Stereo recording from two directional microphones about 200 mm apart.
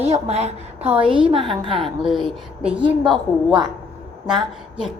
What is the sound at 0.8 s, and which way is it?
A woman's voice, 5° right (ahead or behind).